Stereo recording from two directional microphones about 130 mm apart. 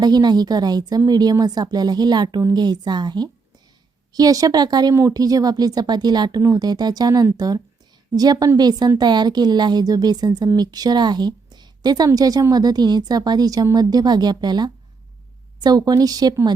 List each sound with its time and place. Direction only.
0.0 s a woman's voice: 30° right (ahead or behind)